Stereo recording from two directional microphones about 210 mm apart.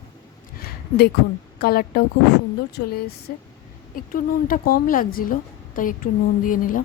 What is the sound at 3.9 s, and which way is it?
Speech, 40° left (ahead or behind).